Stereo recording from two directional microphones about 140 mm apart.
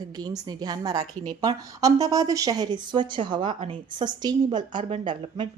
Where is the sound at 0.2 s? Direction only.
30° right (ahead or behind).